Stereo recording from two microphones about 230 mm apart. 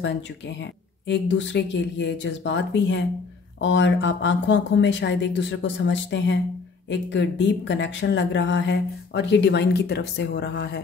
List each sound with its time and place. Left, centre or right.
1.0 s speech: left